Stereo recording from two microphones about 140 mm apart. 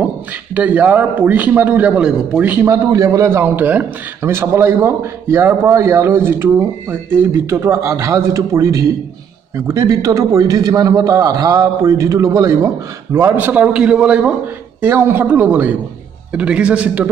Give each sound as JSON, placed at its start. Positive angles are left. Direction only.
{"t": 0.6, "sound": "a man's voice", "side_deg": -10}
{"t": 2.7, "sound": "a man's voice", "side_deg": -25}